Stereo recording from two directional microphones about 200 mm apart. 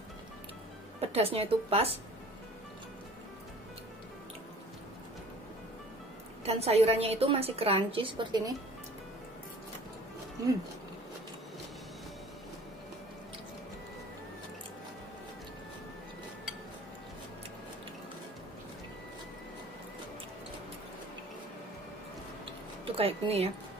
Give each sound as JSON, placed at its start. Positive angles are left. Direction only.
{"t": 1.0, "sound": "a woman's voice", "side_deg": -30}
{"t": 6.4, "sound": "a woman's voice", "side_deg": -30}
{"t": 22.8, "sound": "speech", "side_deg": -30}